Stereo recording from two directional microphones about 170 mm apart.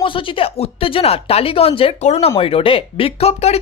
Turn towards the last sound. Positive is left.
turn(degrees=35)  # may be behind; listen again after turning